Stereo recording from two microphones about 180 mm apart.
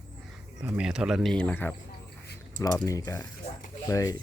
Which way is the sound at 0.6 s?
5° right (ahead or behind).